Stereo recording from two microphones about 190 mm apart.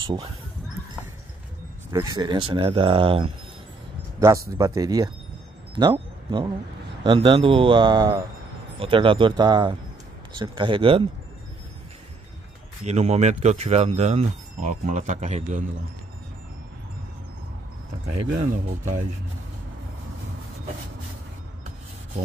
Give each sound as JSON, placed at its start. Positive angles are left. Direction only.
{"t": 1.9, "sound": "speech", "side_deg": -20}
{"t": 4.2, "sound": "speech", "side_deg": -15}
{"t": 12.8, "sound": "speech", "side_deg": -35}